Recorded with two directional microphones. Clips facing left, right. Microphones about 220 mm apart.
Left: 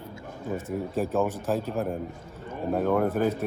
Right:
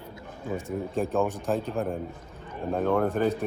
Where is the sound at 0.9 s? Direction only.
Centre (ahead or behind).